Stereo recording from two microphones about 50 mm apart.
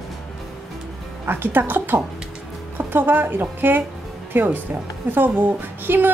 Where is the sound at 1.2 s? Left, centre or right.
Right.